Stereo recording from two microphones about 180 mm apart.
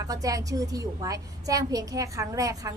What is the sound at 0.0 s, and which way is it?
A woman's voice, 20° right (ahead or behind).